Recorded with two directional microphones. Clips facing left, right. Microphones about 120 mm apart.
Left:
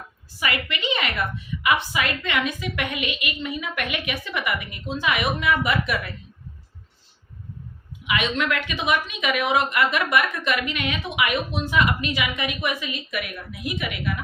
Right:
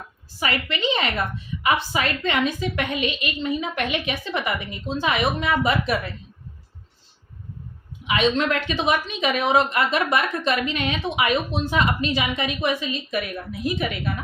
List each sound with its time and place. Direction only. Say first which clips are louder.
0.3 s a woman's voice: right 2 dB; 35° right (ahead or behind)
8.0 s a woman's voice: right 4 dB; 30° right (ahead or behind)